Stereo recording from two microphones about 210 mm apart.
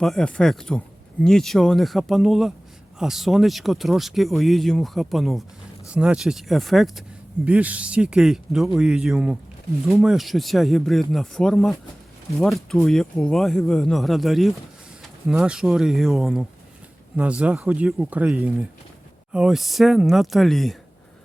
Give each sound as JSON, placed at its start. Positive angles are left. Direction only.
{"t": 0.0, "sound": "speech", "side_deg": 0}